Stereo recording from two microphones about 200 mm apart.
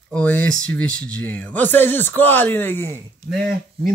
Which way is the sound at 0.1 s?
5° left (ahead or behind).